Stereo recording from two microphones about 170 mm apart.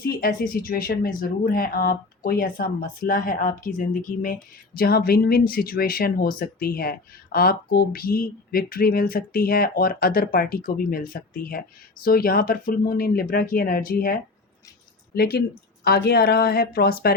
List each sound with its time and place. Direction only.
0.0 s speech: 60° left (ahead or behind)
15.1 s speech: 65° left (ahead or behind)